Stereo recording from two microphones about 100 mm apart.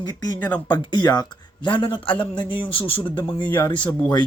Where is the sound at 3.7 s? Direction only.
50° left (ahead or behind).